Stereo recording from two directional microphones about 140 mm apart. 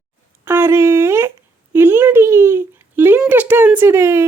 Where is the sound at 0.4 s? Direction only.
15° right (ahead or behind).